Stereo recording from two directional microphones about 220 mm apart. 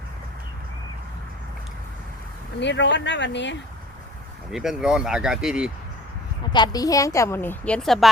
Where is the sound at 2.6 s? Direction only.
55° left (ahead or behind).